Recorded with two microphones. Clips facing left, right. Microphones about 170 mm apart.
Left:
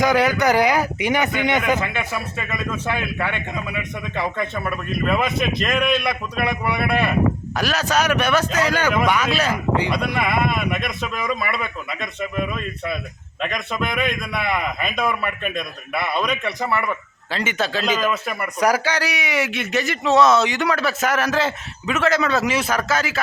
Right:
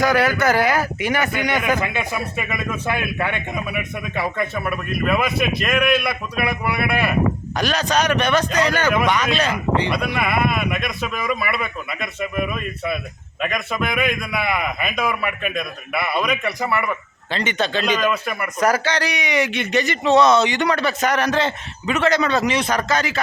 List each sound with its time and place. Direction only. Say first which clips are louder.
0.0 s speech: even; 20° left (ahead or behind)
1.8 s a man's voice: right 1 dB; 15° right (ahead or behind); by 10.0 s 10° left (ahead or behind)
10.0 s a man's voice: even; 5° right (ahead or behind)